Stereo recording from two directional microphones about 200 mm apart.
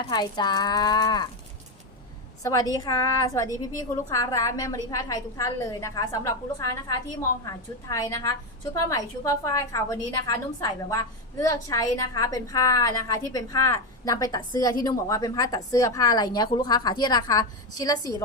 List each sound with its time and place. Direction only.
0.0 s speech: 20° left (ahead or behind)
2.4 s a woman's voice: 15° left (ahead or behind)